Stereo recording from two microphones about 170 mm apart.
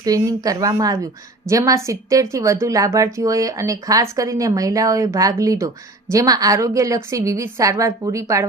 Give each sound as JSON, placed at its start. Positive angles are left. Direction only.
{"t": 0.0, "sound": "speech", "side_deg": -20}